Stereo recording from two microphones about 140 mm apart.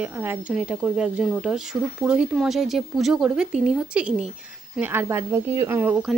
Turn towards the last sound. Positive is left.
turn(degrees=-15)  # may be behind; listen again after turning